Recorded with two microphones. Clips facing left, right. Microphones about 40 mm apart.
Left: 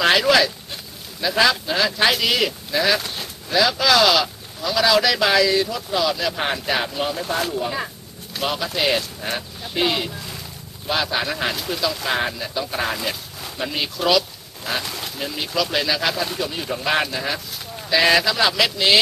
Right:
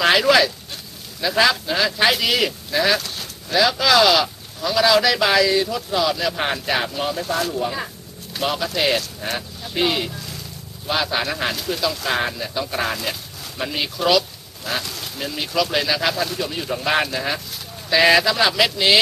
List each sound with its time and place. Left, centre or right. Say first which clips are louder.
0.0 s a sound: right 1 dB; centre
1.2 s speech: even; centre
7.2 s speech: right 1 dB; centre
7.5 s speech: even; centre